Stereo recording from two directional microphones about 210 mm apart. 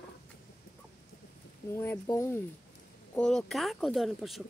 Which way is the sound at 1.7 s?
10° left (ahead or behind).